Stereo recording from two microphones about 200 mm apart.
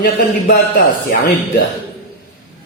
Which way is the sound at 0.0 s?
50° left (ahead or behind).